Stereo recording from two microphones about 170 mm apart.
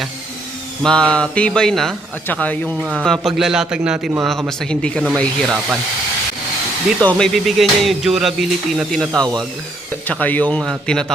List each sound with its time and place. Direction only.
0.8 s music: 5° left (ahead or behind)
2.8 s music: 5° right (ahead or behind)
7.0 s music: 5° left (ahead or behind)
9.2 s speech: 25° right (ahead or behind)
10.1 s speech: 10° left (ahead or behind)
10.6 s music: centre (ahead or behind)